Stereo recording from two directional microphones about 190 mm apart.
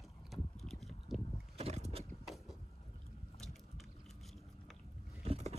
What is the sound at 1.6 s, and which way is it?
Boat, 35° right (ahead or behind).